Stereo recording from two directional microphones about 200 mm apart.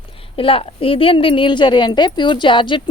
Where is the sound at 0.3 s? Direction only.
25° left (ahead or behind).